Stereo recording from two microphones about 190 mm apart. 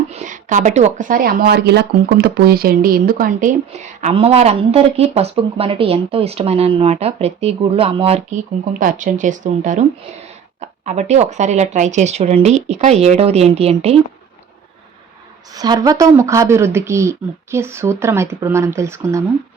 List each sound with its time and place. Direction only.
0.1 s speech: 40° right (ahead or behind)
4.0 s speech: 30° right (ahead or behind)
8.8 s speech: 45° right (ahead or behind)
15.5 s speech: 20° right (ahead or behind)